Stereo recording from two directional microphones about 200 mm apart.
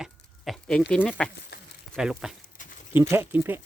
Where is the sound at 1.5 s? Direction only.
55° left (ahead or behind).